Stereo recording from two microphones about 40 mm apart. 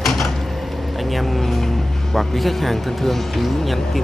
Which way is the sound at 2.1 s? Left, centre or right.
Centre.